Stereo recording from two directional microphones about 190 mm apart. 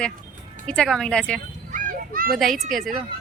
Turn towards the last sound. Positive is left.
turn(degrees=0)  # may be behind; listen again after turning